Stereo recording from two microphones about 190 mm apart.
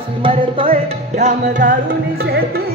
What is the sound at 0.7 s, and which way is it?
Music, 40° right (ahead or behind).